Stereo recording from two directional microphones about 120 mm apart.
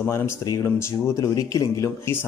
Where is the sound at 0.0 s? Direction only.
25° left (ahead or behind).